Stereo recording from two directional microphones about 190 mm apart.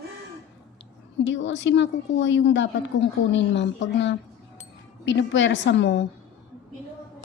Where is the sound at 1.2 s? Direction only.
75° left (ahead or behind).